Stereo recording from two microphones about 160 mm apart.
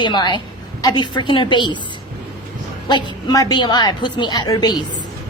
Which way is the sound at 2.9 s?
25° left (ahead or behind).